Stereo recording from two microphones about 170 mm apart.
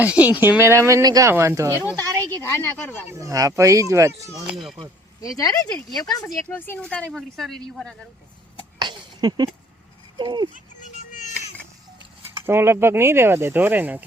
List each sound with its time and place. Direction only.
0.0 s speech: 10° right (ahead or behind)
1.8 s speech: 15° left (ahead or behind)
2.0 s speech: 20° right (ahead or behind)
2.4 s speech: 15° left (ahead or behind)
3.1 s speech: 20° right (ahead or behind)
4.5 s speech: centre (ahead or behind)
5.4 s speech: 20° left (ahead or behind)
6.4 s speech: 10° left (ahead or behind)
8.8 s a sound: 25° right (ahead or behind)
10.2 s speech: 25° right (ahead or behind)
10.8 s music: 45° left (ahead or behind)
12.5 s speech: 15° right (ahead or behind)